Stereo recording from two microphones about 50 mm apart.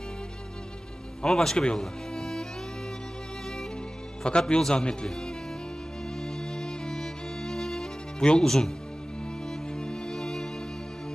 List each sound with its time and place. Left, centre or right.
1.2 s speech: centre
1.8 s music: centre
4.2 s speech: centre
6.2 s music: centre
9.8 s music: centre